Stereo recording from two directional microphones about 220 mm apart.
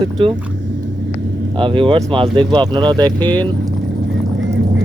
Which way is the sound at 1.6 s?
20° right (ahead or behind).